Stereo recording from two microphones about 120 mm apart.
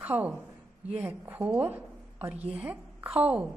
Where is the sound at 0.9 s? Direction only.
15° right (ahead or behind).